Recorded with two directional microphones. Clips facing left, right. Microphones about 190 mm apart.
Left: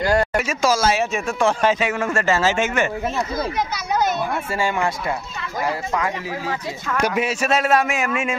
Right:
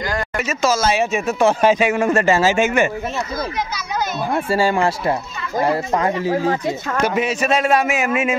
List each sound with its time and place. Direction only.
0.5 s speech: 10° left (ahead or behind); by 2.9 s 10° right (ahead or behind)
4.5 s speech: 35° right (ahead or behind)
7.0 s a man's voice: 5° left (ahead or behind)